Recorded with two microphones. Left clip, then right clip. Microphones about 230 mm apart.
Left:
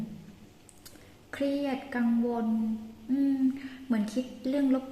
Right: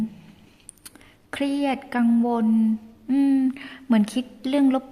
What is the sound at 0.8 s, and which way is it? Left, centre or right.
A woman's voice, right.